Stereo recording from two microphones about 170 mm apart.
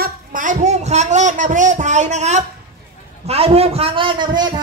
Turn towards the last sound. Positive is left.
turn(degrees=-25)  # may be behind; listen again after turning